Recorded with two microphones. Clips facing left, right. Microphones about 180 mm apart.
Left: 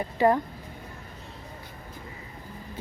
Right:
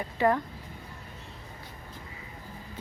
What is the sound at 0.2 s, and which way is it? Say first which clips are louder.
Speech: left 3 dB; 35° left (ahead or behind).